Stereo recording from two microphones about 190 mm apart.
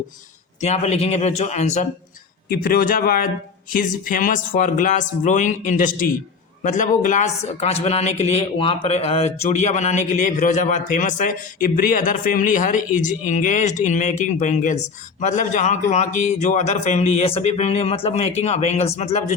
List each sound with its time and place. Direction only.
0.6 s speech: 35° left (ahead or behind)
2.5 s speech: 50° left (ahead or behind); by 19.2 s 35° left (ahead or behind)